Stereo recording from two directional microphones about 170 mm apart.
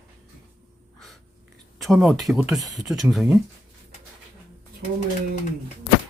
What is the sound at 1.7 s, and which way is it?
Speech, centre (ahead or behind).